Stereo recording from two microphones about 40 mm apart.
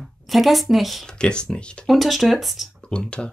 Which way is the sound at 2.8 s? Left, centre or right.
Left.